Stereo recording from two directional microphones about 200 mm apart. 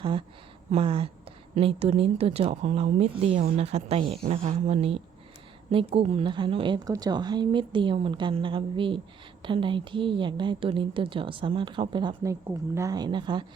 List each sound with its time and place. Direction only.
0.0 s a woman's voice: 25° right (ahead or behind)